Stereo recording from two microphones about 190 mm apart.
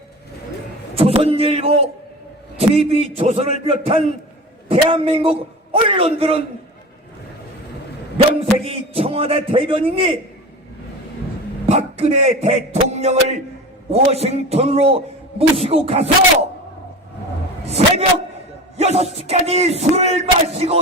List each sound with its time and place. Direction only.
0.9 s speech: 30° right (ahead or behind)
8.4 s a man's voice: 30° right (ahead or behind)
11.9 s speech: 35° right (ahead or behind)
17.7 s a man's voice: 35° right (ahead or behind)